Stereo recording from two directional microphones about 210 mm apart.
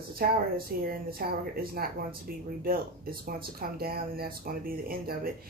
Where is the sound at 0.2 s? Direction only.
45° right (ahead or behind).